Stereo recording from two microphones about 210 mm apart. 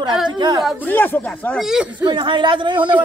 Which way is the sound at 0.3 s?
20° right (ahead or behind).